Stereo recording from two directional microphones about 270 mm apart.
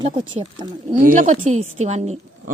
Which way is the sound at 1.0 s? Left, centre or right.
Right.